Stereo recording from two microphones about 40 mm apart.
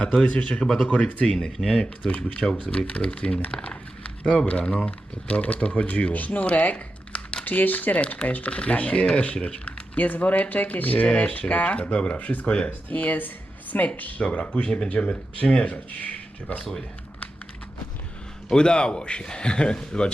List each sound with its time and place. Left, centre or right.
0.0 s a man's voice: left
0.9 s speech: left
1.2 s speech: left
1.8 s a man's voice: left
3.5 s a sound: left
4.4 s speech: left
7.4 s a man's voice: left
11.0 s speech: left
12.2 s speech: left
12.5 s a man's voice: left
12.9 s speech: left
14.2 s a man's voice: left
16.6 s speech: centre
18.4 s a man's voice: left